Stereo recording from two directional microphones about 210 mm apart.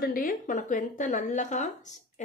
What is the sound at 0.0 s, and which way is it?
Speech, 40° left (ahead or behind).